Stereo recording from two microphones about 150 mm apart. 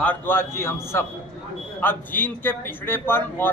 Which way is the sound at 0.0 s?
10° left (ahead or behind).